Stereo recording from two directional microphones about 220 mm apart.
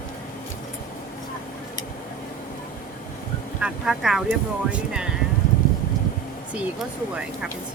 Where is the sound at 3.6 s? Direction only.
Centre (ahead or behind).